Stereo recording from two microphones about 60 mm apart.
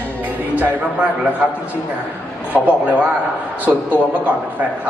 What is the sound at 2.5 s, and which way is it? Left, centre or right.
A man's voice, right.